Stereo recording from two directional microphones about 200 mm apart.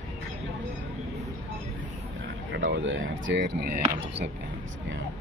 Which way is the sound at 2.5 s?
65° right (ahead or behind).